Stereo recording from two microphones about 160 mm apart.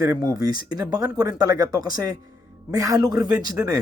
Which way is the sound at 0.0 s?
20° right (ahead or behind).